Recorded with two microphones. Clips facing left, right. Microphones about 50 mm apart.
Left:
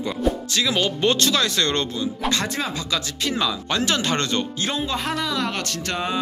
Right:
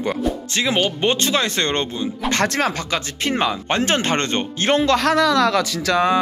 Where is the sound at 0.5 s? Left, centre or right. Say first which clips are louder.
Right 2 dB; right.